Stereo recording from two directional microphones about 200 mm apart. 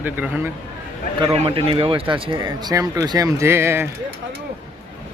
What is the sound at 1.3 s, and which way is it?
Speech, 25° right (ahead or behind).